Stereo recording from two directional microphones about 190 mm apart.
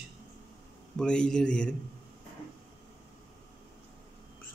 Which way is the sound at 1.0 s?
5° left (ahead or behind).